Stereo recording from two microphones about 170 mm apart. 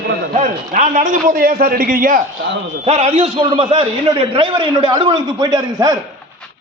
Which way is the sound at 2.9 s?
40° right (ahead or behind).